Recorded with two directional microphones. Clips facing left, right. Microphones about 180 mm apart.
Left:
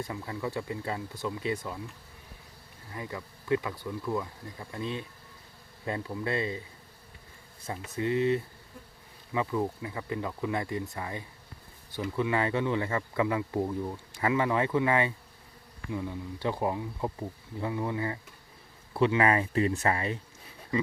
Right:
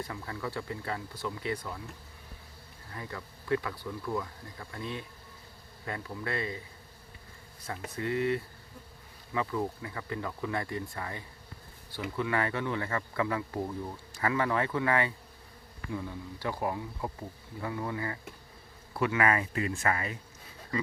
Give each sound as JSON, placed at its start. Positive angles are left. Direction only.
{"t": 0.0, "sound": "speech", "side_deg": 15}
{"t": 2.9, "sound": "speech", "side_deg": 15}
{"t": 7.9, "sound": "speech", "side_deg": 20}